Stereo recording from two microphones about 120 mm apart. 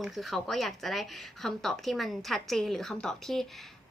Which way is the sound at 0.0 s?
Centre (ahead or behind).